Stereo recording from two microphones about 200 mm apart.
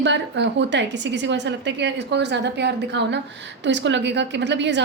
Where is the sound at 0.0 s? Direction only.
60° right (ahead or behind).